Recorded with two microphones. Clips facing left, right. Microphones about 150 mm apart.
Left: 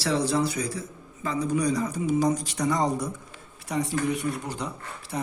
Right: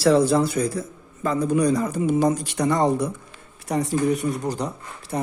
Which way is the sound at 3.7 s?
45° right (ahead or behind).